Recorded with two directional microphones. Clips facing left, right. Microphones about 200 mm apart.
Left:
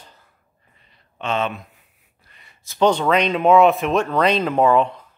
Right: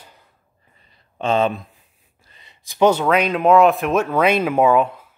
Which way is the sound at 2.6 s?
10° right (ahead or behind).